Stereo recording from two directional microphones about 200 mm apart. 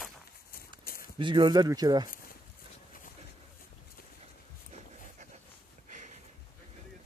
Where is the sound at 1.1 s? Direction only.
25° right (ahead or behind).